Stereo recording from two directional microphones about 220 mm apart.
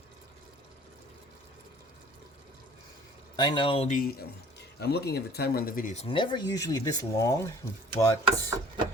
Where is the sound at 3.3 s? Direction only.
20° left (ahead or behind).